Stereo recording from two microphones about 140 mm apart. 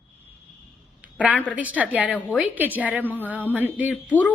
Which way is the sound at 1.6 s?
10° right (ahead or behind).